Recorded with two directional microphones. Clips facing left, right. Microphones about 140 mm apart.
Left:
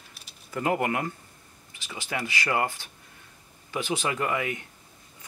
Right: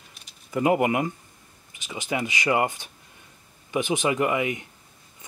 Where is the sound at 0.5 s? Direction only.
15° right (ahead or behind).